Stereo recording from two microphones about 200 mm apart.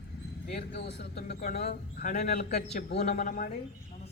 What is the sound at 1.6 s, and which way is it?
A man's voice, 40° left (ahead or behind).